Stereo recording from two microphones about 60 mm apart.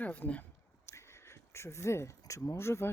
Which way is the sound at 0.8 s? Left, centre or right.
Left.